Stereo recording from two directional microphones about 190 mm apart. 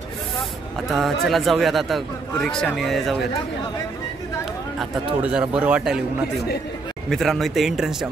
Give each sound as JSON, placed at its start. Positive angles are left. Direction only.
{"t": 0.8, "sound": "speech", "side_deg": 0}
{"t": 4.7, "sound": "speech", "side_deg": -5}
{"t": 7.1, "sound": "speech", "side_deg": 0}